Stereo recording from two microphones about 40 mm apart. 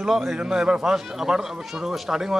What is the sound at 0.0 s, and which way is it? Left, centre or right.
Speech, centre.